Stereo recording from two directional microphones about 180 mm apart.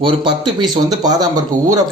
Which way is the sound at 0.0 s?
25° right (ahead or behind).